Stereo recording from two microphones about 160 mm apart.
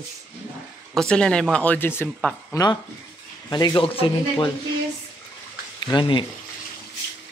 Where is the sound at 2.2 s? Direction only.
5° left (ahead or behind).